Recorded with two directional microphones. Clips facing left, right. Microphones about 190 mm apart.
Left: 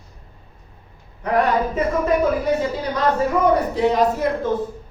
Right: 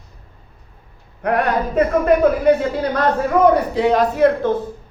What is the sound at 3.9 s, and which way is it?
Speech, 65° right (ahead or behind).